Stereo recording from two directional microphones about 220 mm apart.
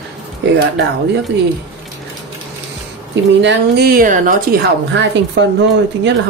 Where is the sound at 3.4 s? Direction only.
45° right (ahead or behind).